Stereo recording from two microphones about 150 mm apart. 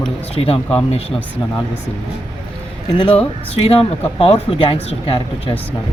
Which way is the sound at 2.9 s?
35° left (ahead or behind).